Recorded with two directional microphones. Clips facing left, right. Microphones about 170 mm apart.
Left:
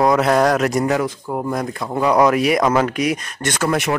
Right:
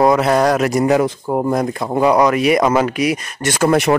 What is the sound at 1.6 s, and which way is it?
Speech, 25° right (ahead or behind).